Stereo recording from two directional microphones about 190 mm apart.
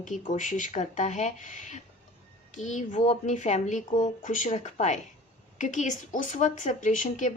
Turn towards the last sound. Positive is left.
turn(degrees=40)  # may be behind; listen again after turning